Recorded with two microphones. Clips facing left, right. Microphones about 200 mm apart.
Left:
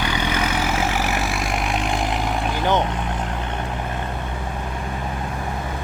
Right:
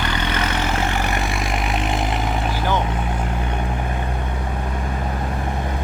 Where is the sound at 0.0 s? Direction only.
10° left (ahead or behind).